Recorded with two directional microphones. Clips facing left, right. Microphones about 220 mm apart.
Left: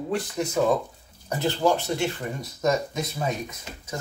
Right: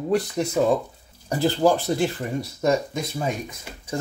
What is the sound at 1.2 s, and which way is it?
Speech, 35° right (ahead or behind).